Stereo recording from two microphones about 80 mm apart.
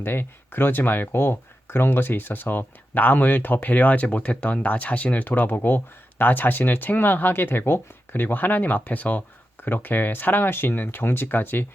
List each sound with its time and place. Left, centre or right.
0.0 s speech: left